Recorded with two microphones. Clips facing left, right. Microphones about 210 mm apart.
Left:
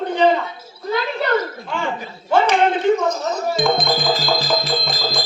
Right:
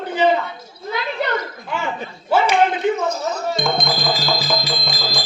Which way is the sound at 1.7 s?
5° right (ahead or behind).